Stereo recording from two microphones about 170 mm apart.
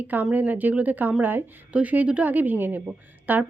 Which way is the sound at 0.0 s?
10° right (ahead or behind).